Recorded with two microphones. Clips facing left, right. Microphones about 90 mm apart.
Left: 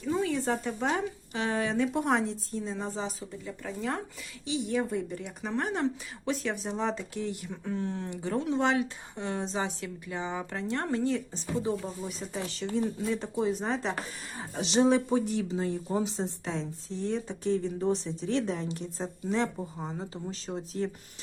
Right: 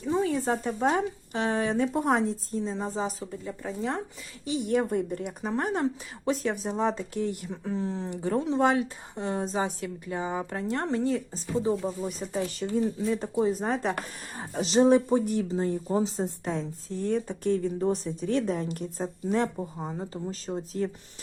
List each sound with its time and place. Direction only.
0.0 s a woman's voice: 30° right (ahead or behind)
3.6 s speech: 30° right (ahead or behind)
4.4 s speech: 50° right (ahead or behind)
5.4 s speech: 40° right (ahead or behind)
7.5 s a woman's voice: 30° right (ahead or behind); by 19.5 s 50° right (ahead or behind)
20.5 s speech: centre (ahead or behind)